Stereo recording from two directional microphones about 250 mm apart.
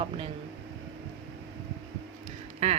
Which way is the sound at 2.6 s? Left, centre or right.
Right.